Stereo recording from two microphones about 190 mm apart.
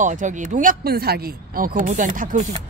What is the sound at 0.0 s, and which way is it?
Speech, 40° right (ahead or behind).